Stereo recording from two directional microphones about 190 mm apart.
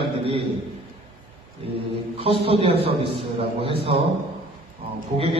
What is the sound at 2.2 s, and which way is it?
Speech, 30° right (ahead or behind).